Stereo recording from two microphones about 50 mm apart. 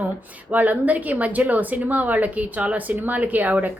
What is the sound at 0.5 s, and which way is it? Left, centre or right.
A woman's voice, right.